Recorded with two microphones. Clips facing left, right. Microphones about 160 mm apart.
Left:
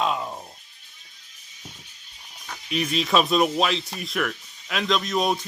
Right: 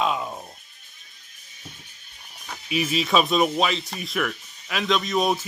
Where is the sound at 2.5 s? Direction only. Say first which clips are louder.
Right 1 dB; 5° right (ahead or behind).